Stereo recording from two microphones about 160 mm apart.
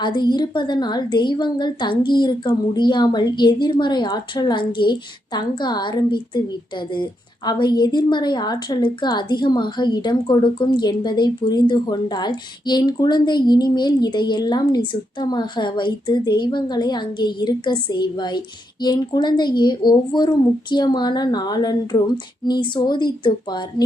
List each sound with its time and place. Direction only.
0.0 s a woman's voice: 30° left (ahead or behind)